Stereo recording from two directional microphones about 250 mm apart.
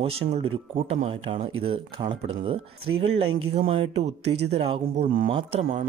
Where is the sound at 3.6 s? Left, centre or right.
Right.